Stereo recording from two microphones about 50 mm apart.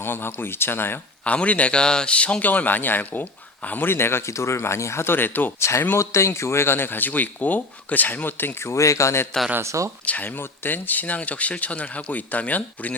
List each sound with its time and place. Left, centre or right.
0.0 s speech: left
1.2 s speech: left
3.7 s speech: left
4.4 s speech: left
5.5 s speech: left
8.6 s a man's voice: left
9.6 s speech: right
10.1 s speech: left